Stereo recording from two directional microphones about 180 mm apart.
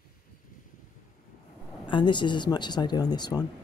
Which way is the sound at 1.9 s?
25° left (ahead or behind).